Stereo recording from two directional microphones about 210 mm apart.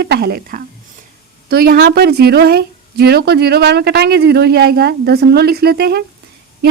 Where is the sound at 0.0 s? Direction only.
50° right (ahead or behind).